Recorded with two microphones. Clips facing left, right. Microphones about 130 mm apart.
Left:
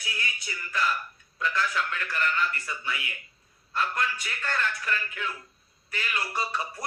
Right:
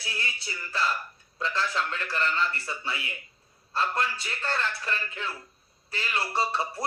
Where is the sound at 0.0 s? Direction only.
30° right (ahead or behind).